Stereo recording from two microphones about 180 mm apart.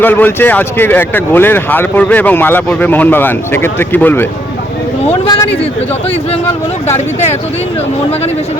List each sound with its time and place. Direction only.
0.0 s speech: 10° left (ahead or behind)
6.8 s speech: 35° left (ahead or behind)